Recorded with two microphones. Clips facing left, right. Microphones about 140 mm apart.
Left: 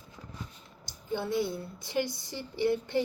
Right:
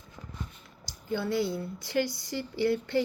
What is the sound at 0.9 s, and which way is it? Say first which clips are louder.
A woman's voice: right 2 dB; 20° left (ahead or behind).